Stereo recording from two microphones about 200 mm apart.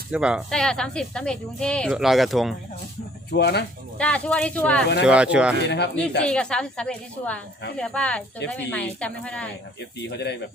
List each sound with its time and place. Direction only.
0.1 s speech: 5° right (ahead or behind)
3.3 s speech: 55° left (ahead or behind)
3.9 s speech: 5° left (ahead or behind)
5.0 s speech: 5° right (ahead or behind)
5.6 s speech: 55° left (ahead or behind)
6.2 s speech: 5° left (ahead or behind)
10.0 s speech: 55° left (ahead or behind)